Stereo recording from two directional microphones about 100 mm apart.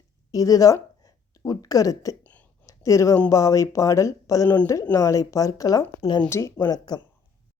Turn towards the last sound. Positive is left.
turn(degrees=45)  # may be behind; listen again after turning